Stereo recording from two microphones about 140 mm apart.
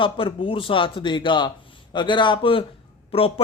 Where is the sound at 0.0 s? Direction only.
35° left (ahead or behind).